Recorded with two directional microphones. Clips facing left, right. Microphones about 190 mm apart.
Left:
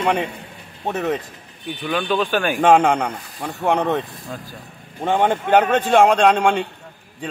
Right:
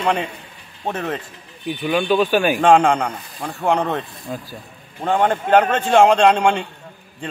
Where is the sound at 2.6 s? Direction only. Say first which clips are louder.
Left 1 dB; 5° left (ahead or behind).